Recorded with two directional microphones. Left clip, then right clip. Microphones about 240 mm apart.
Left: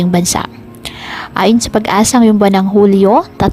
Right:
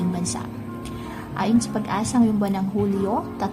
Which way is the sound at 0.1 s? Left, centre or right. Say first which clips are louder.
Left 15 dB; left.